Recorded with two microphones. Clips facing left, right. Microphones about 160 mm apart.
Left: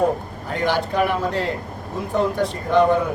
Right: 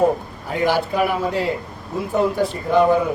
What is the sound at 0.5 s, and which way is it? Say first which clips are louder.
A man's voice: right 2 dB; 5° right (ahead or behind).